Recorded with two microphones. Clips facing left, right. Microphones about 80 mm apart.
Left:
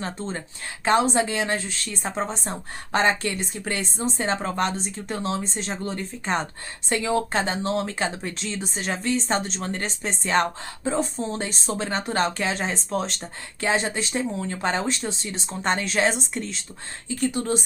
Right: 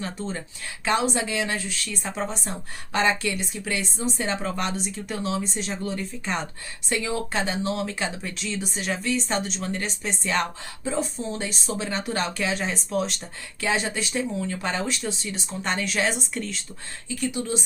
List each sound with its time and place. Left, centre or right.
0.0 s a woman's voice: left
17.1 s a woman's voice: left